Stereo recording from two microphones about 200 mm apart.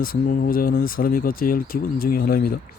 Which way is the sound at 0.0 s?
45° left (ahead or behind).